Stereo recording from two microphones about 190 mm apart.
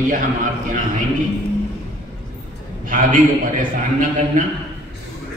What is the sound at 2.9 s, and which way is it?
Speech, 45° right (ahead or behind).